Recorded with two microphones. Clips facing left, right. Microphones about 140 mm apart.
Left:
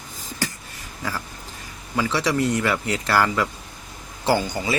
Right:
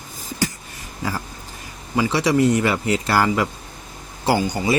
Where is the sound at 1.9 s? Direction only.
15° right (ahead or behind).